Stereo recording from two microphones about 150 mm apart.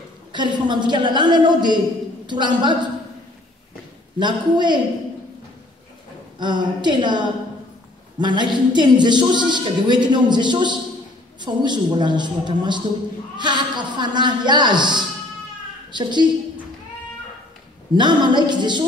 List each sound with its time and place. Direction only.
0.3 s a woman's voice: 30° right (ahead or behind)
4.2 s a woman's voice: 30° right (ahead or behind)
6.3 s a woman's voice: 30° right (ahead or behind)
17.9 s a woman's voice: 30° right (ahead or behind)